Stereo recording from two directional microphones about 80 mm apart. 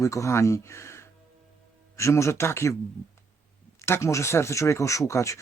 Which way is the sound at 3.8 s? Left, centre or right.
Left.